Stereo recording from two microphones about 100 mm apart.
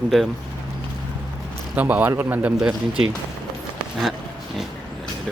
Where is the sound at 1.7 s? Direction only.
15° right (ahead or behind).